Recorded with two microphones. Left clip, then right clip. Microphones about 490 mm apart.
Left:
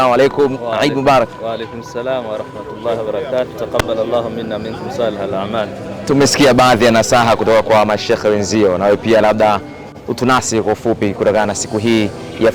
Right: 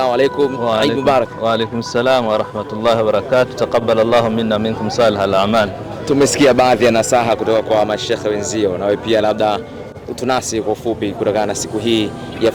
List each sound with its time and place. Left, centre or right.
0.0 s a man's voice: left
1.5 s a man's voice: right
6.1 s speech: left
10.2 s speech: left
11.0 s speech: left